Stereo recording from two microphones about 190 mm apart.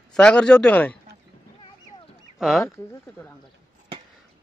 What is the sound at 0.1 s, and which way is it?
Speech, 5° left (ahead or behind).